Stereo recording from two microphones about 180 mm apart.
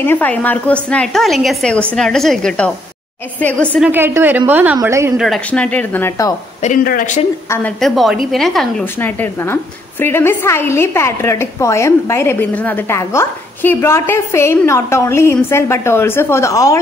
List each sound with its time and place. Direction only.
0.0 s a woman's voice: 10° left (ahead or behind)
3.8 s a woman's voice: 10° right (ahead or behind)
5.1 s a woman's voice: centre (ahead or behind); by 6.3 s 15° left (ahead or behind)
6.6 s speech: 50° left (ahead or behind)
7.4 s a woman's voice: 15° left (ahead or behind)
7.8 s a woman's voice: centre (ahead or behind); by 16.7 s 15° left (ahead or behind)